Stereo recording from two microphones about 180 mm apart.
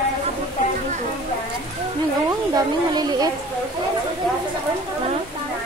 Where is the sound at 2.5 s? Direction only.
20° right (ahead or behind).